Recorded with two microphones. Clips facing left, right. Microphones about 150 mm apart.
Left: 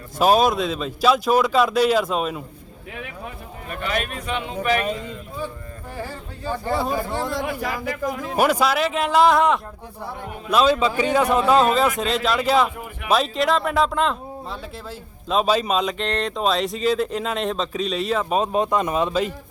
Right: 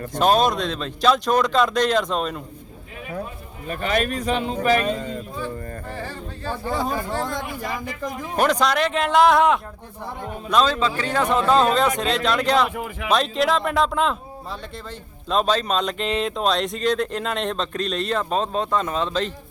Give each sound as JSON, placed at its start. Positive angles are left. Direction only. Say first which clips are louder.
{"t": 0.2, "sound": "speech", "louder": "left 1 dB", "side_deg": 5}
{"t": 3.7, "sound": "a man's voice", "louder": "right 4 dB", "side_deg": -40}
{"t": 6.0, "sound": "a man's voice", "louder": "even", "side_deg": 10}
{"t": 15.3, "sound": "a man's voice", "louder": "left 1 dB", "side_deg": 5}